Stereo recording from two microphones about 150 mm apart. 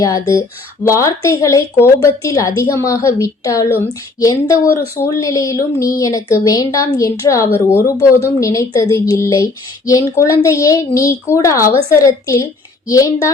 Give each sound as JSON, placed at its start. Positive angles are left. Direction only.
{"t": 0.9, "sound": "speech", "side_deg": 20}